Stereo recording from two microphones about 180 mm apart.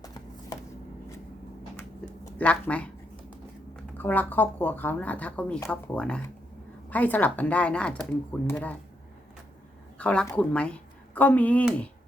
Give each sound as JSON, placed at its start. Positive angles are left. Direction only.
{"t": 2.4, "sound": "a sound", "side_deg": 5}
{"t": 3.9, "sound": "speech", "side_deg": 10}
{"t": 10.0, "sound": "a woman's voice", "side_deg": 5}